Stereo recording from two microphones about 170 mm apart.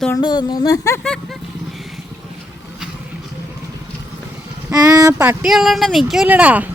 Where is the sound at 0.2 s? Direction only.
25° left (ahead or behind).